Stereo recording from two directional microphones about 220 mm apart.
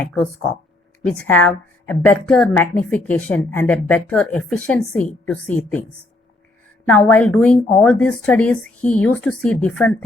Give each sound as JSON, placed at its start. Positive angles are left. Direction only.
{"t": 0.0, "sound": "speech", "side_deg": 5}
{"t": 1.3, "sound": "a woman's voice", "side_deg": 10}
{"t": 6.9, "sound": "a woman's voice", "side_deg": 5}